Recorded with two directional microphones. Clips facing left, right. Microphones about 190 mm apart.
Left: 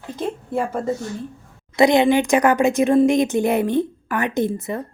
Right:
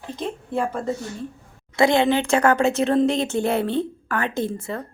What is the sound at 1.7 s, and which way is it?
A woman's voice, 15° left (ahead or behind).